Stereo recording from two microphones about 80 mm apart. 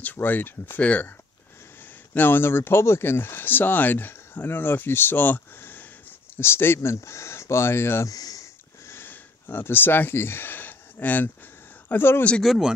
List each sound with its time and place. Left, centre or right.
0.0 s speech: left
2.1 s speech: left
8.1 s a sound: left
8.8 s a sound: left
11.9 s speech: left
12.3 s speech: centre